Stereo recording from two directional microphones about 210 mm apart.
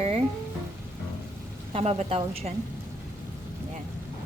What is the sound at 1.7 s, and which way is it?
Speech, 30° right (ahead or behind).